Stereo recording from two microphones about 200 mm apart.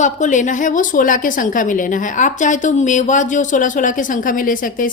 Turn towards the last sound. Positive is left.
turn(degrees=45)  # may be behind; listen again after turning